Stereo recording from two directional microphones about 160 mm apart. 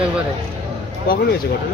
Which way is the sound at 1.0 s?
65° left (ahead or behind).